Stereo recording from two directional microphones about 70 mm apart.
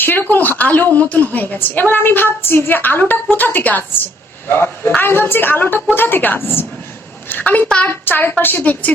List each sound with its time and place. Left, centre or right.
0.0 s a woman's voice: left
7.9 s a woman's voice: left